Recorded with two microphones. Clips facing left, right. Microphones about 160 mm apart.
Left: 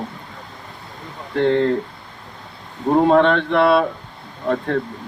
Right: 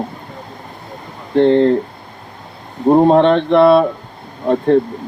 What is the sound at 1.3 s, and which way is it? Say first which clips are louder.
Speech: right 6 dB; 30° right (ahead or behind).